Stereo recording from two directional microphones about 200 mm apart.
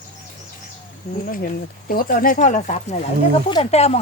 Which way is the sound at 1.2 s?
45° left (ahead or behind).